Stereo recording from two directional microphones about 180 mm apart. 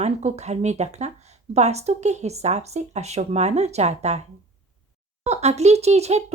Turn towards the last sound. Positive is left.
turn(degrees=-35)  # may be behind; listen again after turning